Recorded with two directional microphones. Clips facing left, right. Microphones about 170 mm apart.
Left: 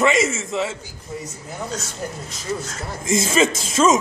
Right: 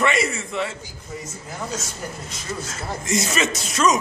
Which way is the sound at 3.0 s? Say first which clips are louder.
Left 3 dB; 90° left.